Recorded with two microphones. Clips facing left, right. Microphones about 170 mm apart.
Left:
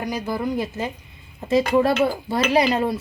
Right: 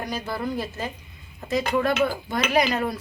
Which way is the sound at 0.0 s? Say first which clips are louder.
Left 4 dB; 15° left (ahead or behind).